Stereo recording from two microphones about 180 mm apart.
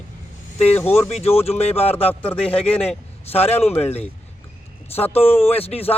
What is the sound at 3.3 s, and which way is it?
Speech, 35° left (ahead or behind).